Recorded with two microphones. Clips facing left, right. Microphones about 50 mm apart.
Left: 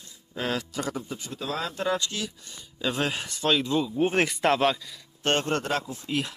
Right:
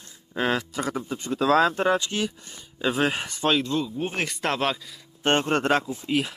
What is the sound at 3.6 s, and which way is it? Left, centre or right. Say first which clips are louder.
Speech: left 2 dB; centre.